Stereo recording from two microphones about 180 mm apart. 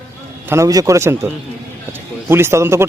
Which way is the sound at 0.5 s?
20° right (ahead or behind).